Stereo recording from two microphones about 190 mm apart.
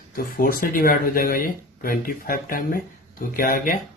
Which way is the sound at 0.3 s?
50° left (ahead or behind).